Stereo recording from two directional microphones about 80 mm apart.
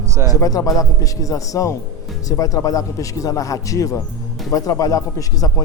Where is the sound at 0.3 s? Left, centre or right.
Left.